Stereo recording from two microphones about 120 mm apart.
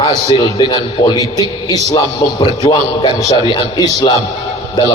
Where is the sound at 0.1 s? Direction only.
35° left (ahead or behind).